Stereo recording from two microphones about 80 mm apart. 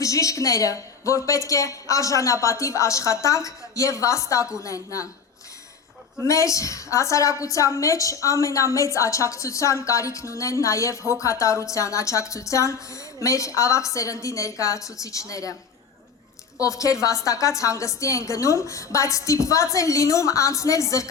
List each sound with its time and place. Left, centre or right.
0.0 s a woman's voice: left
6.2 s a woman's voice: left
16.6 s a woman's voice: left